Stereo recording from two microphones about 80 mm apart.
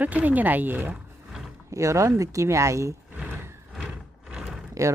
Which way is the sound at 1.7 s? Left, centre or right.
Right.